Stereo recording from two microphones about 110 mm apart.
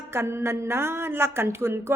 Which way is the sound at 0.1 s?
25° right (ahead or behind).